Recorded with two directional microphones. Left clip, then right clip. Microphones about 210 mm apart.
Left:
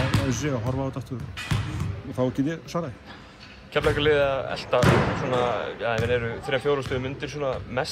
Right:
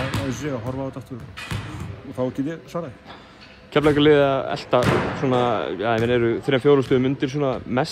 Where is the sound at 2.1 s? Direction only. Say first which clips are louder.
Even; centre (ahead or behind).